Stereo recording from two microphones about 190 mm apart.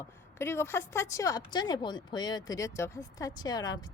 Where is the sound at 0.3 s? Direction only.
15° left (ahead or behind).